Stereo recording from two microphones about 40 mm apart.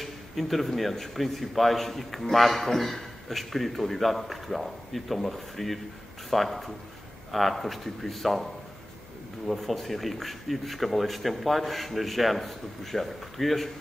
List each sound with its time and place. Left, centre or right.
0.0 s a man's voice: centre
9.5 s a man's voice: centre